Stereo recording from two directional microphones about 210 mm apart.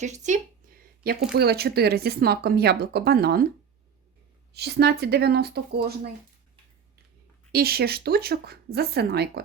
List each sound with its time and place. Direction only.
0.0 s speech: 35° right (ahead or behind)
1.0 s speech: 50° right (ahead or behind)
4.5 s speech: 50° right (ahead or behind)
7.5 s speech: 45° right (ahead or behind)